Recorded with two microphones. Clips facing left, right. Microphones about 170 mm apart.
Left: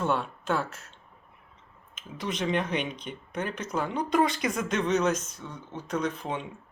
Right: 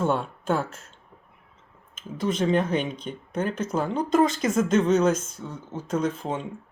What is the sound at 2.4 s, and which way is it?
Speech, 30° right (ahead or behind).